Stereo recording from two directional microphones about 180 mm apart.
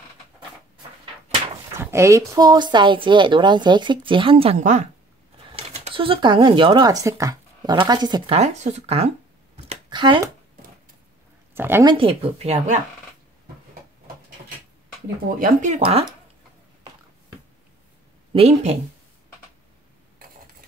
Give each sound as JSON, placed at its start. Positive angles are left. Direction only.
{"t": 1.8, "sound": "a woman's voice", "side_deg": -15}
{"t": 8.4, "sound": "speech", "side_deg": -40}
{"t": 9.8, "sound": "speech", "side_deg": -25}
{"t": 11.5, "sound": "speech", "side_deg": -10}
{"t": 11.9, "sound": "speech", "side_deg": -30}
{"t": 15.3, "sound": "speech", "side_deg": -45}
{"t": 15.8, "sound": "speech", "side_deg": -30}
{"t": 18.3, "sound": "speech", "side_deg": -35}